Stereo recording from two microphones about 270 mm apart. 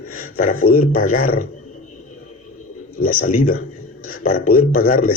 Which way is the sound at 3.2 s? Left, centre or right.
Left.